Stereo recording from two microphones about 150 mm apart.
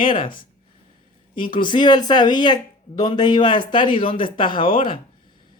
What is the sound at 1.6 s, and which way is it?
Speech, 30° left (ahead or behind).